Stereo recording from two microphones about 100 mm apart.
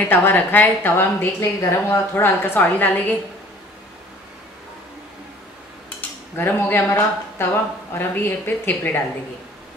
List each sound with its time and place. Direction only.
0.1 s a woman's voice: 20° left (ahead or behind)
5.9 s cutlery: 20° left (ahead or behind)
7.9 s a woman's voice: 20° left (ahead or behind)